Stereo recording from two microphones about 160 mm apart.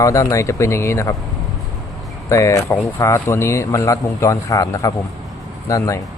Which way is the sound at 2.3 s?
20° left (ahead or behind).